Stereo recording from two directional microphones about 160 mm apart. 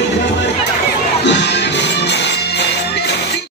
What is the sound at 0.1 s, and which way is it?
Chatter, 90° left.